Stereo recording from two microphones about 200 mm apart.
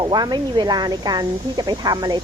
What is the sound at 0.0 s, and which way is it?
A woman's voice, 20° right (ahead or behind).